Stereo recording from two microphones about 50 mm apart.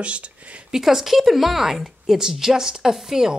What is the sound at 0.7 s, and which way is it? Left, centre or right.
Speech, centre.